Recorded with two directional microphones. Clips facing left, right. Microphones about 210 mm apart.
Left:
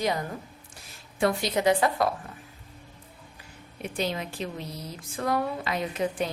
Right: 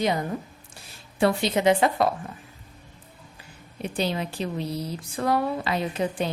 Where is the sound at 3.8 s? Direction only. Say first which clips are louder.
Right 3 dB; 30° right (ahead or behind).